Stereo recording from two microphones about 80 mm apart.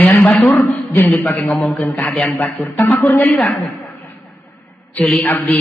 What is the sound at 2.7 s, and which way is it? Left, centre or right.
Speech, left.